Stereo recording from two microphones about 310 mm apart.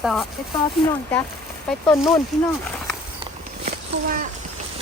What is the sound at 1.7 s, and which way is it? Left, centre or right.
Speech, centre.